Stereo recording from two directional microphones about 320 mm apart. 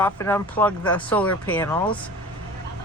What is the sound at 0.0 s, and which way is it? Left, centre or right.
Speech, centre.